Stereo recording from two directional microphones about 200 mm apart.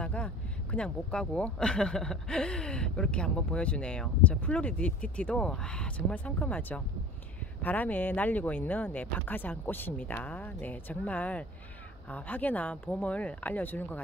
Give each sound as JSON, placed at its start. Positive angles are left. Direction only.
{"t": 0.0, "sound": "speech", "side_deg": 5}